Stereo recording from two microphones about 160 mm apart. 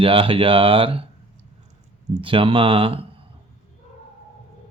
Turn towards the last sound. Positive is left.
turn(degrees=-35)  # may be behind; listen again after turning